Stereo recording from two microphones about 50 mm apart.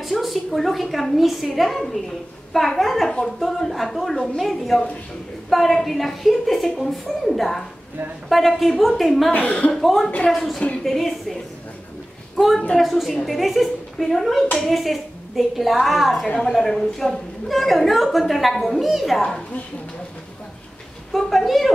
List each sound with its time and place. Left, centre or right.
0.0 s a woman's voice: centre
9.3 s speech: left
9.7 s a woman's voice: centre
12.7 s a woman's voice: centre
21.1 s a woman's voice: centre